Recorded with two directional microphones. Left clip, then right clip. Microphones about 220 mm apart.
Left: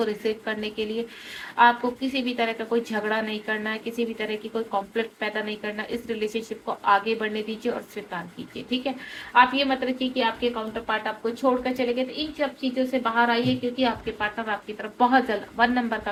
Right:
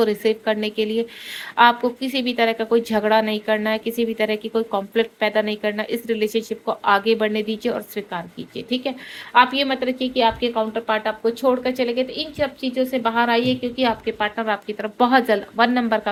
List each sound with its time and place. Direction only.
0.0 s a woman's voice: 50° right (ahead or behind)